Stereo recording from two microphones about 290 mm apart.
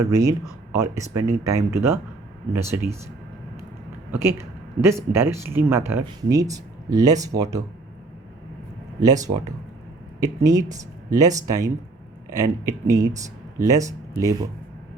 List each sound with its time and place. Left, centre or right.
0.0 s speech: centre
4.1 s speech: centre
9.0 s speech: centre